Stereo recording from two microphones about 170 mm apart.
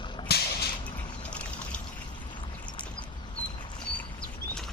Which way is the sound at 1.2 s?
5° left (ahead or behind).